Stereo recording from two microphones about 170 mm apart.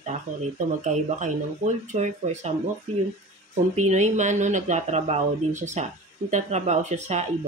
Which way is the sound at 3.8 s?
45° right (ahead or behind).